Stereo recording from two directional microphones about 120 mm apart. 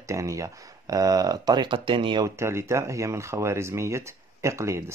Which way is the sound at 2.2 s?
25° right (ahead or behind).